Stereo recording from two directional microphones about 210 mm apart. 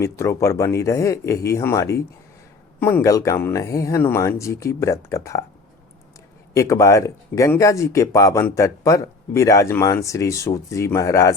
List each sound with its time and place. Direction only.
0.0 s speech: 15° left (ahead or behind)
6.5 s speech: 15° left (ahead or behind)